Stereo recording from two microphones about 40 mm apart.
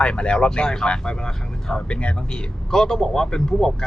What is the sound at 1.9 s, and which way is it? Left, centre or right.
Speech, left.